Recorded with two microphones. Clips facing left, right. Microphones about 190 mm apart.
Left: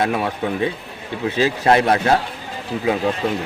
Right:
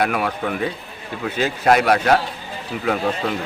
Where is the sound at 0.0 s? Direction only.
25° left (ahead or behind).